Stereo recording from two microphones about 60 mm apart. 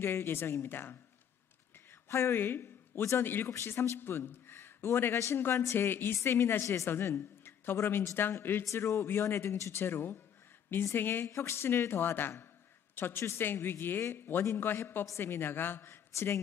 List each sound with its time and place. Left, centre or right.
0.0 s speech: left
2.0 s a man's voice: left
5.8 s speech: left